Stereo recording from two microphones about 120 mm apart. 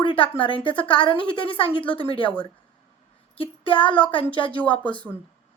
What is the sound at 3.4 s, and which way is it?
A woman's voice, 45° left (ahead or behind).